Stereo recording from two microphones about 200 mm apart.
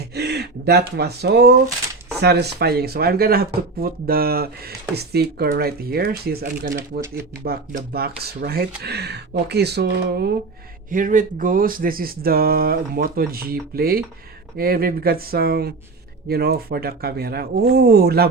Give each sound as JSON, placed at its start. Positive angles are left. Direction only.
{"t": 0.1, "sound": "speech", "side_deg": -55}
{"t": 10.8, "sound": "speech", "side_deg": -40}